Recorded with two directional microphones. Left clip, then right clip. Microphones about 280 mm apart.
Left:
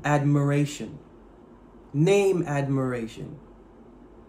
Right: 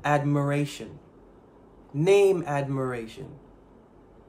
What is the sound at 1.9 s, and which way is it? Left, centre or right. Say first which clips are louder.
A man's voice: right 1 dB; centre.